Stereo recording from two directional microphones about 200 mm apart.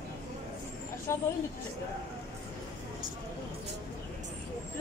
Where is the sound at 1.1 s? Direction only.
15° left (ahead or behind).